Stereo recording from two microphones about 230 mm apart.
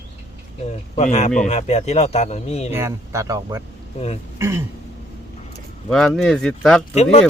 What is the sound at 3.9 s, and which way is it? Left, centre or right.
Speech, left.